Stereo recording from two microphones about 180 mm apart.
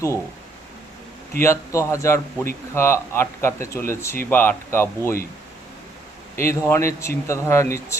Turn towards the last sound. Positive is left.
turn(degrees=15)  # may be behind; listen again after turning